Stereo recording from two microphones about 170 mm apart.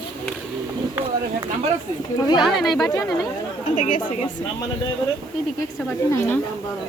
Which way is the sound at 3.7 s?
50° left (ahead or behind).